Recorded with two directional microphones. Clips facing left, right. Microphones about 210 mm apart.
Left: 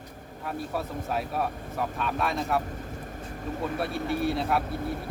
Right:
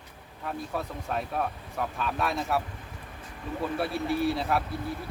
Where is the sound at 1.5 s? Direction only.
45° left (ahead or behind).